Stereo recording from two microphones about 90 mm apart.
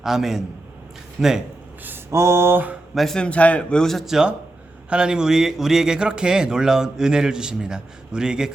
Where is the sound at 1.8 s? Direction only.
30° right (ahead or behind).